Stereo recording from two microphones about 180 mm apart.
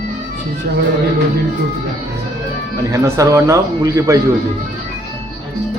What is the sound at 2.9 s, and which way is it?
A man's voice, 15° right (ahead or behind).